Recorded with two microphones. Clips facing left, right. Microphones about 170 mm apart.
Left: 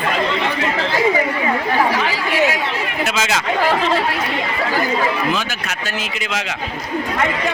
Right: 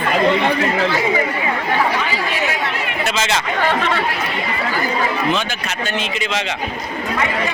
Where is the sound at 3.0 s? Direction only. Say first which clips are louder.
Even; 5° left (ahead or behind).